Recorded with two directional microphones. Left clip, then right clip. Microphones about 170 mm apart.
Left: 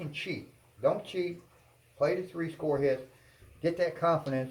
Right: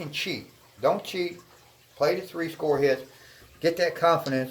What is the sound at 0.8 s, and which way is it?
A man's voice, 40° right (ahead or behind).